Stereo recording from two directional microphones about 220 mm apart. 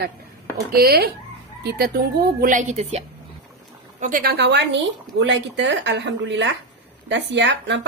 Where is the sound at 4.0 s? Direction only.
40° right (ahead or behind).